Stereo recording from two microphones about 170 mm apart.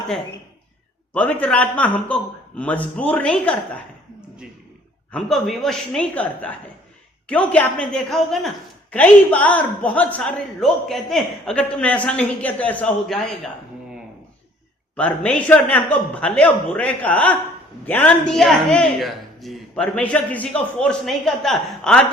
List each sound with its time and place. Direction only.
1.1 s a woman's voice: 10° left (ahead or behind)
5.1 s a man's voice: centre (ahead or behind)
14.9 s a woman's voice: 5° left (ahead or behind)